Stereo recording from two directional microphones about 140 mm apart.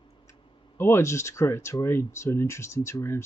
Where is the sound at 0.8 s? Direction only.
20° left (ahead or behind).